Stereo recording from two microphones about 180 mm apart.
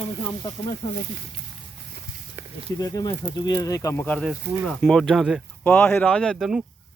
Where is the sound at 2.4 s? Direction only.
15° right (ahead or behind).